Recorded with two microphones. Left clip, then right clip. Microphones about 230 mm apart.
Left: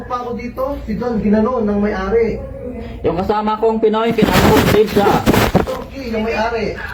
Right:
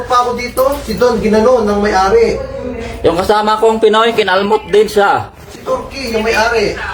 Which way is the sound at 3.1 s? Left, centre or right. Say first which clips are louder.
Right 6 dB; right.